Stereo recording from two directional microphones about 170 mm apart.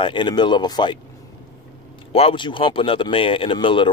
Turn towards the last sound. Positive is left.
turn(degrees=30)  # may be behind; listen again after turning